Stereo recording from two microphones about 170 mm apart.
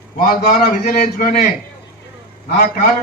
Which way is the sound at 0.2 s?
60° left (ahead or behind).